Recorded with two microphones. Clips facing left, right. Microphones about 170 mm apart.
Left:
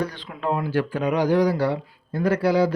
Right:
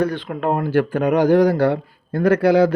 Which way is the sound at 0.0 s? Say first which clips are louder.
Right 7 dB; 55° right (ahead or behind).